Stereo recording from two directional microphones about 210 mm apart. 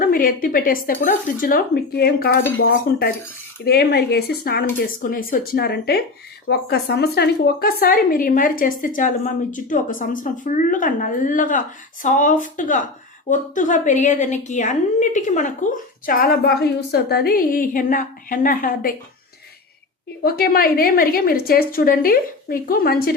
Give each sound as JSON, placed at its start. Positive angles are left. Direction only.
{"t": 0.0, "sound": "a woman's voice", "side_deg": 40}
{"t": 3.6, "sound": "a woman's voice", "side_deg": 50}
{"t": 20.2, "sound": "a woman's voice", "side_deg": 45}